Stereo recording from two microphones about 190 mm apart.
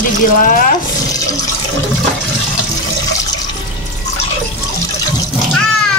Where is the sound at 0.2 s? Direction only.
45° left (ahead or behind).